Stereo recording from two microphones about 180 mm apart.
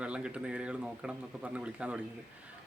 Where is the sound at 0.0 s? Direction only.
5° right (ahead or behind).